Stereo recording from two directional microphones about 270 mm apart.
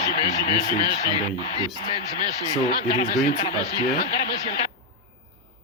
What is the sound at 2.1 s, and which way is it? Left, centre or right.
Speech, centre.